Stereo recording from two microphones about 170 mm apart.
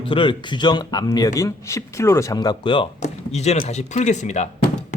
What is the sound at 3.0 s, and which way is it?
Speech, 40° left (ahead or behind).